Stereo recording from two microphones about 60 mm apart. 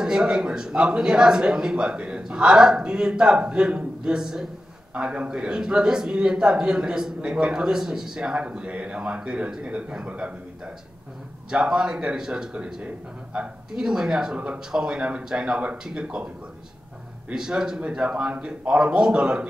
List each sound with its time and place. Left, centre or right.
0.0 s a man's voice: centre
11.5 s a man's voice: centre
17.3 s a man's voice: centre